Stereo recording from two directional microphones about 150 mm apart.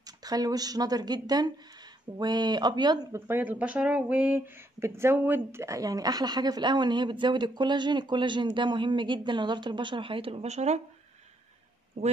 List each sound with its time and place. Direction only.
0.0 s speech: 25° right (ahead or behind)
3.3 s a woman's voice: 15° right (ahead or behind); by 10.8 s 50° right (ahead or behind)
12.0 s a man's voice: 45° right (ahead or behind)